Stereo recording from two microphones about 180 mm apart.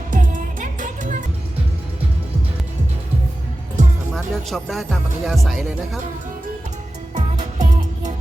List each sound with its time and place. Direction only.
0.1 s music: 45° right (ahead or behind)
4.1 s speech: centre (ahead or behind)
7.1 s music: 40° right (ahead or behind)